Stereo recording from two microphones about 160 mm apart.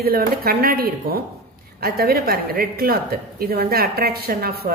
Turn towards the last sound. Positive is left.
turn(degrees=-75)  # may be behind; listen again after turning